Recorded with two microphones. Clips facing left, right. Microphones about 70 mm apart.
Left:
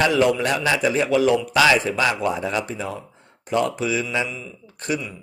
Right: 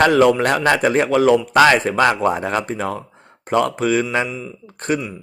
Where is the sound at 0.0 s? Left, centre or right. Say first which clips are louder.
Right 5 dB; right.